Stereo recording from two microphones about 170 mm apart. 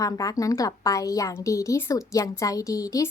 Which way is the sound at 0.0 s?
20° left (ahead or behind).